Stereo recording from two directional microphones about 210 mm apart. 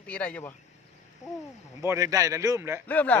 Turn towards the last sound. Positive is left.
turn(degrees=10)  # may be behind; listen again after turning